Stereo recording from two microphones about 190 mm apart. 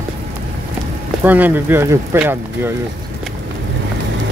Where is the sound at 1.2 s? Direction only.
10° right (ahead or behind).